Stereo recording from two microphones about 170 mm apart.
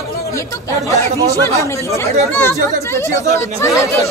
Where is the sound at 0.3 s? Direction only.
20° left (ahead or behind).